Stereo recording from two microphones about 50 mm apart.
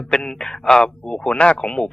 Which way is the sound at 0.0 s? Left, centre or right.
Centre.